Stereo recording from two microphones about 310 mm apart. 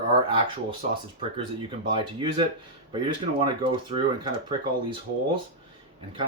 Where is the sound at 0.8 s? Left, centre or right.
Right.